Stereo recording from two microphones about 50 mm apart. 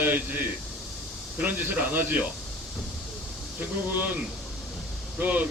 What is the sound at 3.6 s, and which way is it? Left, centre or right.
Speech, right.